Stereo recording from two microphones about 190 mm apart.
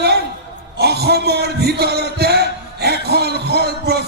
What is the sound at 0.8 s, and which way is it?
Heart murmur, 55° right (ahead or behind).